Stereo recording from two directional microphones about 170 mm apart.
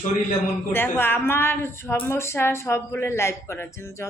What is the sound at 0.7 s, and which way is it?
A woman's voice, 15° left (ahead or behind).